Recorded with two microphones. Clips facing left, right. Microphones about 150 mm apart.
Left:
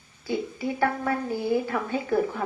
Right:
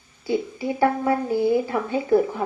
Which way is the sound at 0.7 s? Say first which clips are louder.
Right 6 dB; 20° right (ahead or behind).